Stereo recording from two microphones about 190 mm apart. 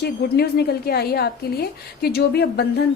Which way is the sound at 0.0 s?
55° left (ahead or behind).